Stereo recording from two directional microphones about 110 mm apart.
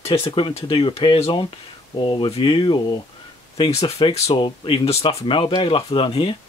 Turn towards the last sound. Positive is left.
turn(degrees=55)  # may be behind; listen again after turning